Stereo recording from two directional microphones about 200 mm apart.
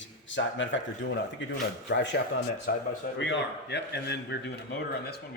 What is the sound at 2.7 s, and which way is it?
Speech, 45° left (ahead or behind).